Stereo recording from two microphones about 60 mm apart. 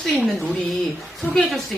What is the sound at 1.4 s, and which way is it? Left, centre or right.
Speech, centre.